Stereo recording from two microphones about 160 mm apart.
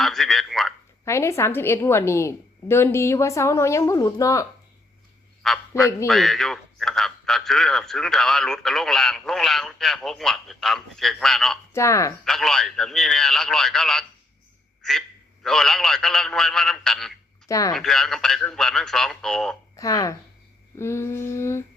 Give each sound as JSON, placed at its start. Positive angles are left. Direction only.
{"t": 0.0, "sound": "a sound", "side_deg": 0}
{"t": 1.0, "sound": "a woman's voice", "side_deg": 15}
{"t": 5.7, "sound": "a woman's voice", "side_deg": 20}
{"t": 6.1, "sound": "a man's voice", "side_deg": 0}
{"t": 11.7, "sound": "speech", "side_deg": 20}
{"t": 12.2, "sound": "a man's voice", "side_deg": 0}
{"t": 17.5, "sound": "speech", "side_deg": 20}
{"t": 17.7, "sound": "a man's voice", "side_deg": 0}
{"t": 19.7, "sound": "a woman's voice", "side_deg": 20}